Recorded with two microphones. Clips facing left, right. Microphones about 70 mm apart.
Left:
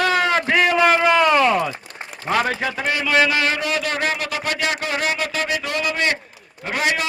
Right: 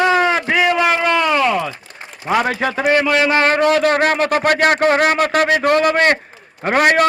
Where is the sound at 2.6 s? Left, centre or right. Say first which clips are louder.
Right 7 dB; right.